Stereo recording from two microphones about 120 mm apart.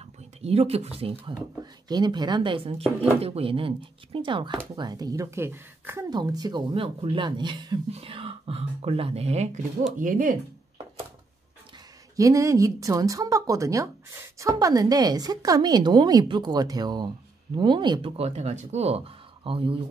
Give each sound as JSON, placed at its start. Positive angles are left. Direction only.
{"t": 0.0, "sound": "speech", "side_deg": -55}
{"t": 1.6, "sound": "speech", "side_deg": -35}
{"t": 4.7, "sound": "speech", "side_deg": -35}
{"t": 6.0, "sound": "a woman's voice", "side_deg": -35}
{"t": 6.7, "sound": "speech", "side_deg": -50}
{"t": 7.9, "sound": "speech", "side_deg": -50}
{"t": 10.0, "sound": "speech", "side_deg": -90}
{"t": 12.2, "sound": "a woman's voice", "side_deg": -25}
{"t": 18.1, "sound": "speech", "side_deg": -60}